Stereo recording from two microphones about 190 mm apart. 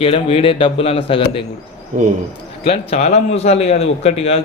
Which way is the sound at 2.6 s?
35° left (ahead or behind).